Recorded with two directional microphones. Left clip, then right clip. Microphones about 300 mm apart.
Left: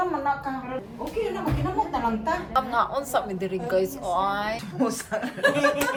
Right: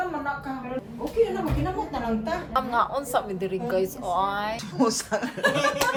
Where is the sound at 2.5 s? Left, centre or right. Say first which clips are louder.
Right 1 dB; centre.